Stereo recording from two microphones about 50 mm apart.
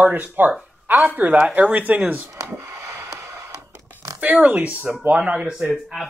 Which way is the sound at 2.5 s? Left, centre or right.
Right.